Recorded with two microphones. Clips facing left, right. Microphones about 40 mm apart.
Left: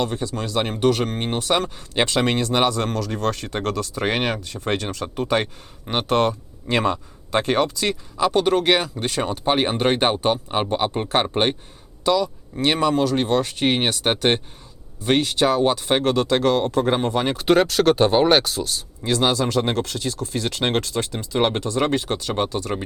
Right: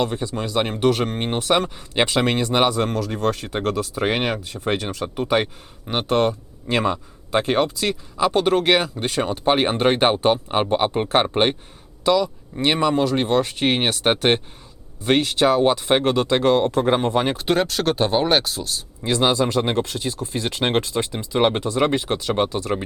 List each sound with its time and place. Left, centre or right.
0.0 s speech: centre
17.3 s speech: centre
19.0 s speech: centre
22.7 s speech: centre